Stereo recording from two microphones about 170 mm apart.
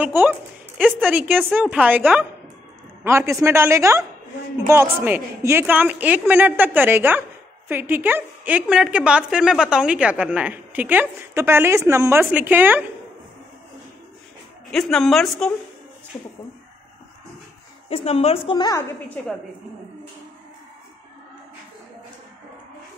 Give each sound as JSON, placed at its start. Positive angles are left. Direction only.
{"t": 0.0, "sound": "a woman's voice", "side_deg": -10}
{"t": 14.7, "sound": "speech", "side_deg": 0}
{"t": 17.8, "sound": "a woman's voice", "side_deg": 35}
{"t": 18.8, "sound": "a woman's voice", "side_deg": 10}